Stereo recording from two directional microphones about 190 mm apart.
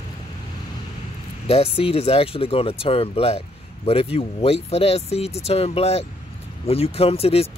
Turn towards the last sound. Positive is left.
turn(degrees=30)  # may be behind; listen again after turning